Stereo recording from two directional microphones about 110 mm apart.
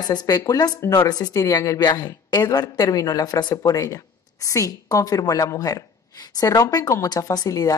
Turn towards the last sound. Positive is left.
turn(degrees=35)  # may be behind; listen again after turning